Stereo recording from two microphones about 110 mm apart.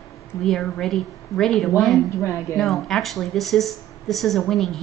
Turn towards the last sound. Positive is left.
turn(degrees=5)  # may be behind; listen again after turning